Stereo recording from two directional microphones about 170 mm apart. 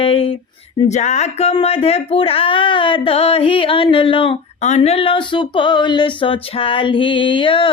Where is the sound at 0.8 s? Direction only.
45° left (ahead or behind).